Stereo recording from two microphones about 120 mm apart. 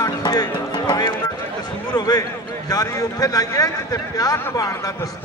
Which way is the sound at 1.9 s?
35° left (ahead or behind).